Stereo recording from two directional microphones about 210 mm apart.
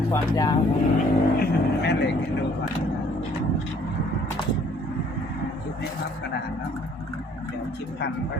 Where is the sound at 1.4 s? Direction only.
50° left (ahead or behind).